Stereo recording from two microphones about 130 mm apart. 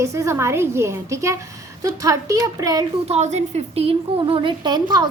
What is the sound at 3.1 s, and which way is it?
A woman's voice, 60° right (ahead or behind).